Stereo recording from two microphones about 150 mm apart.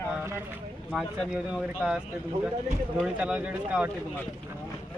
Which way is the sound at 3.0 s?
5° right (ahead or behind).